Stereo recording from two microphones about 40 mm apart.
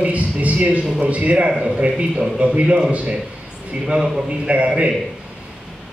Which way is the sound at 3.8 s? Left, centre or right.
Centre.